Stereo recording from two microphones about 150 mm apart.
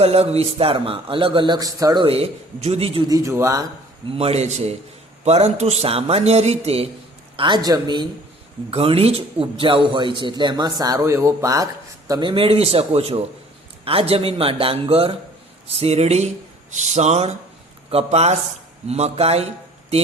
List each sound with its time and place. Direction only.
0.0 s a man's voice: 45° right (ahead or behind); by 2.0 s 25° right (ahead or behind)
2.0 s a man's voice: 40° right (ahead or behind)
3.1 s a man's voice: 20° right (ahead or behind)
4.1 s a man's voice: 40° right (ahead or behind)
7.3 s a man's voice: 30° right (ahead or behind)
8.7 s a man's voice: 40° right (ahead or behind)